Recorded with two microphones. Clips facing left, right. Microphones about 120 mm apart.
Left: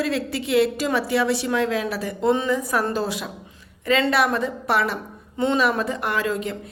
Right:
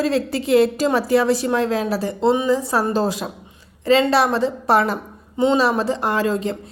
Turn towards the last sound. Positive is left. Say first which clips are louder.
# right 4 dB
turn(degrees=-35)  # may be behind; listen again after turning